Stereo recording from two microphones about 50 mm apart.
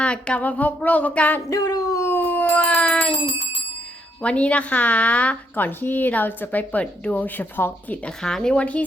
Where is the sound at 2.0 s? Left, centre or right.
Left.